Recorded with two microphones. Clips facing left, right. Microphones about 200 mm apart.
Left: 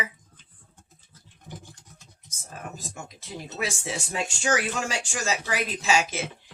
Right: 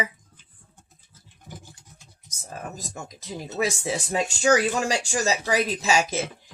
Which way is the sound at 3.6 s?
40° right (ahead or behind).